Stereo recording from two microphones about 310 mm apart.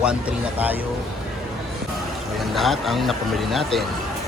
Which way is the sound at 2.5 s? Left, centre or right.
Centre.